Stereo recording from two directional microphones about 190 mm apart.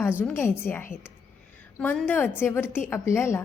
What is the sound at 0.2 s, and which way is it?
Speech, 10° left (ahead or behind).